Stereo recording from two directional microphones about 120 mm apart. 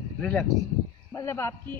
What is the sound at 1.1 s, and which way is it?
Speech, 20° left (ahead or behind).